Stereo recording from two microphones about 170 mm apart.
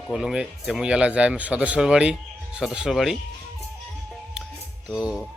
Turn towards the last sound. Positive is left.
turn(degrees=-5)  # may be behind; listen again after turning